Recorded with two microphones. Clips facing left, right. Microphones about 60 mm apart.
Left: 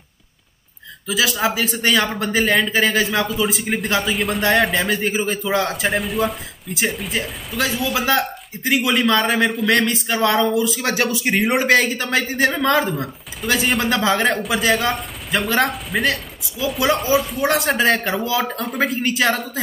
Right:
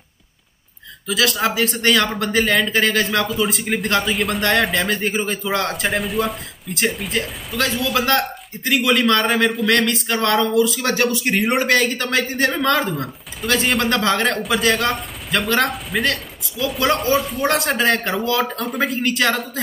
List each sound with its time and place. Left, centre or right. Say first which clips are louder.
1.0 s a man's voice: even; centre
12.3 s a man's voice: left 1 dB; centre
12.5 s a man's voice: left 1 dB; centre
19.0 s speech: even; centre